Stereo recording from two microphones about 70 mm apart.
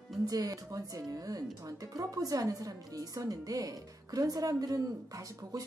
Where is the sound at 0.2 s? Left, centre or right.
Right.